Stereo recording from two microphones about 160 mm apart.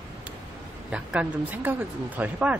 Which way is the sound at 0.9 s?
10° right (ahead or behind).